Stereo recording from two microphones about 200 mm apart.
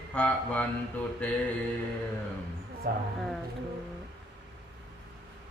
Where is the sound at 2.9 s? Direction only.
45° right (ahead or behind).